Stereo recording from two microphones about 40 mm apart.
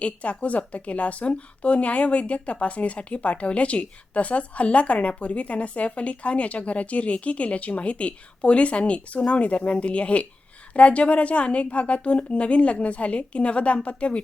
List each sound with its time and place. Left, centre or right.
0.0 s speech: left